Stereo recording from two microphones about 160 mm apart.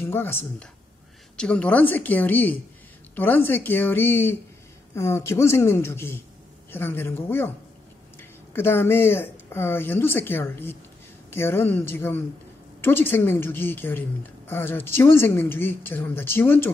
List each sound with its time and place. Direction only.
0.0 s a woman's voice: 15° left (ahead or behind)